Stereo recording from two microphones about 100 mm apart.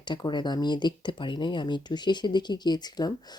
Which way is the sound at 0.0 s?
50° left (ahead or behind).